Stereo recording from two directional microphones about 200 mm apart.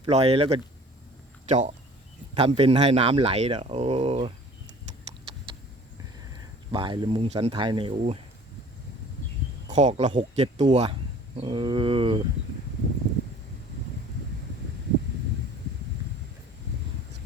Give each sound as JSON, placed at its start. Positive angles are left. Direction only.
{"t": 0.0, "sound": "speech", "side_deg": -30}
{"t": 6.7, "sound": "speech", "side_deg": -25}
{"t": 9.7, "sound": "speech", "side_deg": -35}